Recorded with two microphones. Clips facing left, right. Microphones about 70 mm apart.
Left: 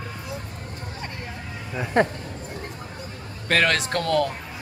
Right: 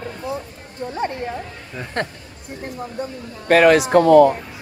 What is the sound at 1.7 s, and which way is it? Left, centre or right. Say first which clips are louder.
Speech: left 5 dB; centre.